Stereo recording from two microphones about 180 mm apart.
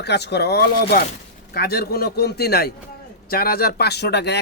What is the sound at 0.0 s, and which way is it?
Speech, 65° left (ahead or behind).